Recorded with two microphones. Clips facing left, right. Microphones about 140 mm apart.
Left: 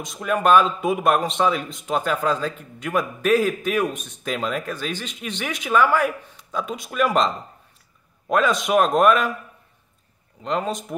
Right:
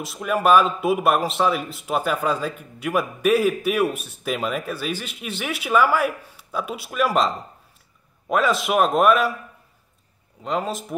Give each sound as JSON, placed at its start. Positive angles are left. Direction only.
{"t": 0.0, "sound": "a man's voice", "side_deg": -5}
{"t": 8.3, "sound": "a man's voice", "side_deg": -5}
{"t": 10.4, "sound": "a man's voice", "side_deg": -5}